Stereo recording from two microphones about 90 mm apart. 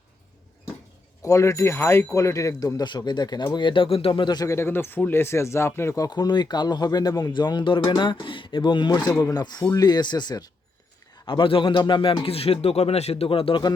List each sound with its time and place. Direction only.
1.2 s speech: 35° left (ahead or behind); by 4.4 s 55° left (ahead or behind)
4.4 s speech: 30° left (ahead or behind)
6.0 s speech: 50° left (ahead or behind)
7.3 s speech: 55° left (ahead or behind)
9.0 s speech: 35° left (ahead or behind)
9.3 s speech: 50° left (ahead or behind)
11.3 s speech: 70° left (ahead or behind); by 13.6 s 90° left